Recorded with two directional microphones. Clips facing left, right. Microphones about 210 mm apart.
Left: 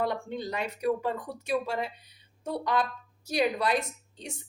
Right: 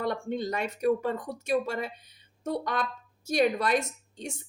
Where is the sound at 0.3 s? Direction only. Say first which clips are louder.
Right 2 dB; 45° right (ahead or behind).